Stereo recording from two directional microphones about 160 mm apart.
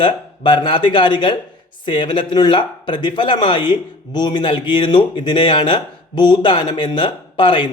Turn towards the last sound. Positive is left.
turn(degrees=30)  # may be behind; listen again after turning